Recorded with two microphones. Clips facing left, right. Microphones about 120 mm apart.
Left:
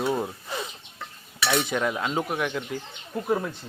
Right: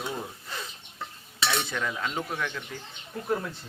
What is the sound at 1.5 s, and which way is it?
Speech, 20° left (ahead or behind).